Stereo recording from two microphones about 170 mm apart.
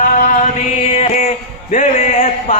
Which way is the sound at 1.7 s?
45° left (ahead or behind).